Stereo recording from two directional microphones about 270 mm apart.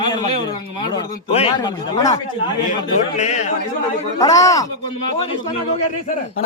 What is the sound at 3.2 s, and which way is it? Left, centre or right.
Speech, left.